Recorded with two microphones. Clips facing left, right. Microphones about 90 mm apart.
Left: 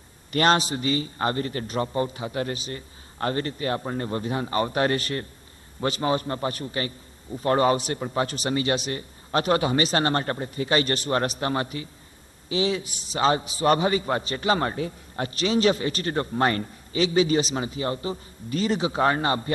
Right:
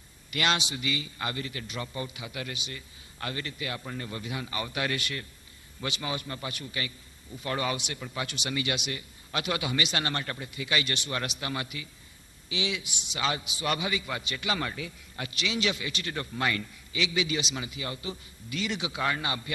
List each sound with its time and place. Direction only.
0.3 s a man's voice: 40° left (ahead or behind)